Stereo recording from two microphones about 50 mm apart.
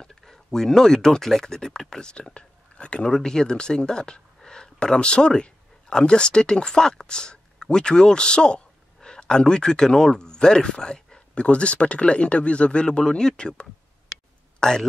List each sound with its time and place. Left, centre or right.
0.0 s speech: centre